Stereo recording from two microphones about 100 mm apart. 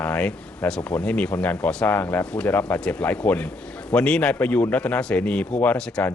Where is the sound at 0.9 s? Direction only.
10° left (ahead or behind).